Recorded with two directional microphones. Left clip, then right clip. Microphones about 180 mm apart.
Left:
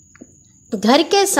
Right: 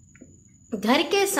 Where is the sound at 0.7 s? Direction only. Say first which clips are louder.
Left 8 dB; 45° left (ahead or behind).